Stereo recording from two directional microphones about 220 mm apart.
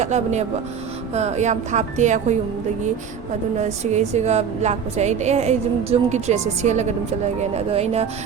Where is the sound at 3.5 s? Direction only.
30° right (ahead or behind).